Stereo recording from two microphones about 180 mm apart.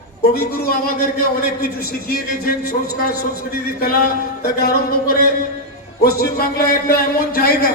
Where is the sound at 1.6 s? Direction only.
55° left (ahead or behind).